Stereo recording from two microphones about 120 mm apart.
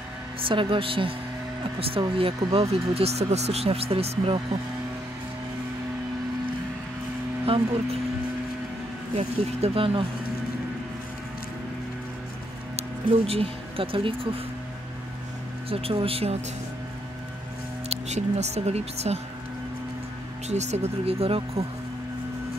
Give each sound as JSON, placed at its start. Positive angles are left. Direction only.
{"t": 0.4, "sound": "speech", "side_deg": -45}
{"t": 7.4, "sound": "speech", "side_deg": -50}
{"t": 9.1, "sound": "speech", "side_deg": -60}
{"t": 12.7, "sound": "speech", "side_deg": -55}
{"t": 15.7, "sound": "speech", "side_deg": -50}
{"t": 17.8, "sound": "speech", "side_deg": -70}
{"t": 20.4, "sound": "speech", "side_deg": -70}